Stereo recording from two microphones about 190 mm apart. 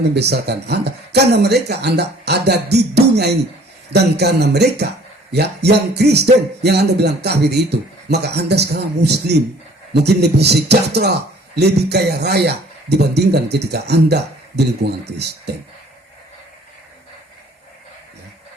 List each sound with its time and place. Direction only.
0.1 s speech: 60° right (ahead or behind)